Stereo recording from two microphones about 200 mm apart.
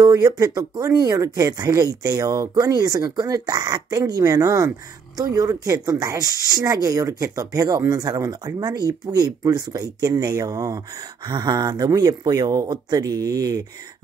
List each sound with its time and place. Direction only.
0.0 s speech: 20° right (ahead or behind)